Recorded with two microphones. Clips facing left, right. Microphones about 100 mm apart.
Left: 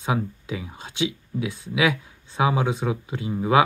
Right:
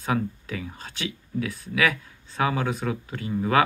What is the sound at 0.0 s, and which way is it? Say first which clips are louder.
Speech: even; 15° left (ahead or behind).